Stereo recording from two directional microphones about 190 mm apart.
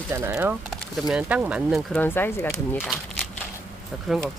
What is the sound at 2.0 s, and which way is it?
Speech, 10° left (ahead or behind).